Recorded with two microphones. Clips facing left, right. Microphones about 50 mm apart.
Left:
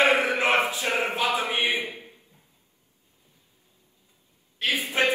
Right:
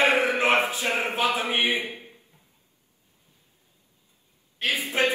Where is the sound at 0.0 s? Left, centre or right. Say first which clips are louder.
Even; right.